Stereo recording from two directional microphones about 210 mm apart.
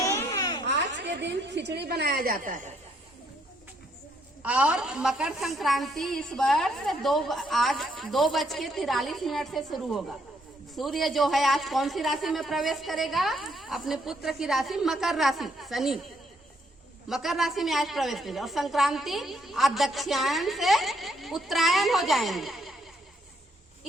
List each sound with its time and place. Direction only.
0.0 s a sound: 15° left (ahead or behind)
0.7 s a woman's voice: 60° right (ahead or behind); by 2.7 s 40° right (ahead or behind)
4.4 s a woman's voice: 5° right (ahead or behind)
17.1 s a woman's voice: centre (ahead or behind)